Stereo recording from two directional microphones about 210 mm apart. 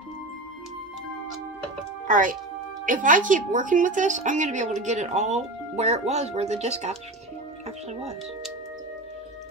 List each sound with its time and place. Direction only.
2.0 s a woman's voice: 40° right (ahead or behind)
7.6 s music: 30° right (ahead or behind)